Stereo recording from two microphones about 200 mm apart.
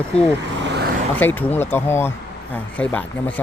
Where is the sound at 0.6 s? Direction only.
55° right (ahead or behind).